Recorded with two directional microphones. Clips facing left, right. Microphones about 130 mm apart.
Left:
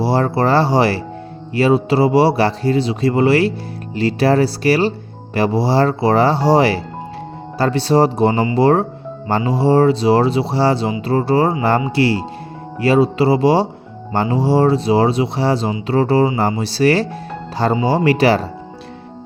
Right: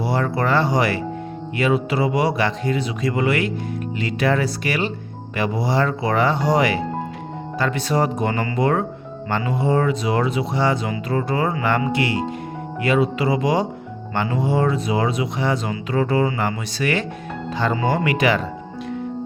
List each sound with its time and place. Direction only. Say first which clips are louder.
0.0 s speech: left 5 dB; 30° left (ahead or behind)